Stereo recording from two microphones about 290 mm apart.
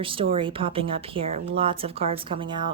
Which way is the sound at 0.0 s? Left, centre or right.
Centre.